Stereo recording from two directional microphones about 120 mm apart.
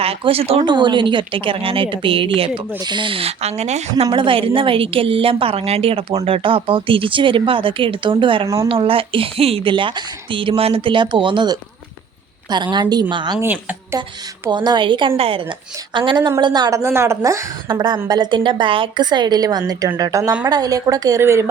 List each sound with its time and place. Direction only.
0.0 s speech: 55° right (ahead or behind)
0.6 s a woman's voice: 40° right (ahead or behind); by 3.5 s 55° right (ahead or behind)
3.6 s a woman's voice: 70° right (ahead or behind); by 11.5 s 40° right (ahead or behind)
12.7 s a woman's voice: 35° right (ahead or behind)
13.4 s a woman's voice: 15° right (ahead or behind)
14.5 s a woman's voice: 35° right (ahead or behind)
17.7 s a woman's voice: 40° right (ahead or behind); by 21.5 s 25° right (ahead or behind)